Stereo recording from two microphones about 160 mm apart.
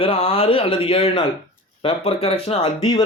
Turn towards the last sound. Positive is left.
turn(degrees=35)  # may be behind; listen again after turning